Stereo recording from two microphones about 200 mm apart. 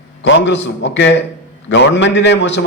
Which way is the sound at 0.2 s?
65° left (ahead or behind).